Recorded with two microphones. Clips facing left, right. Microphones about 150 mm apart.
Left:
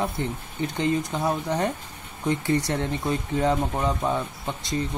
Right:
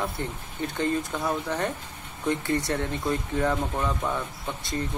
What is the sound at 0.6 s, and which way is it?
Speech, 20° left (ahead or behind).